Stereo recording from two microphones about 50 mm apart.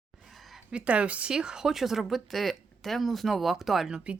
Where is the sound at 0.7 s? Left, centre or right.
Right.